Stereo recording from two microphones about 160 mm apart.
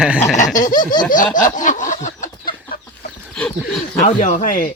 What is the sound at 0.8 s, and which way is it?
Laughter, 25° left (ahead or behind).